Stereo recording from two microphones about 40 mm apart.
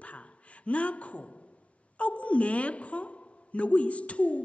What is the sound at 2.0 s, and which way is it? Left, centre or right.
A woman's voice, left.